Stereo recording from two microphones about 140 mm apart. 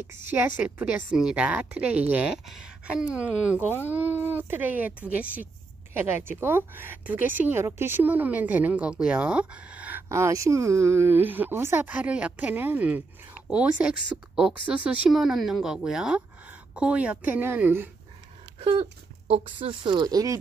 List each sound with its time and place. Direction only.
0.0 s a woman's voice: 15° right (ahead or behind)
18.6 s speech: 40° right (ahead or behind)